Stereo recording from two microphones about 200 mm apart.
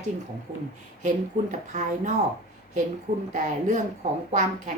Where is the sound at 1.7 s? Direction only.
40° right (ahead or behind).